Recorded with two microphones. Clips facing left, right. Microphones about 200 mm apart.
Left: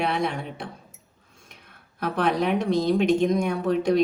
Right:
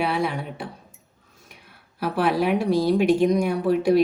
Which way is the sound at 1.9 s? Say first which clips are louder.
Right 2 dB; 5° right (ahead or behind).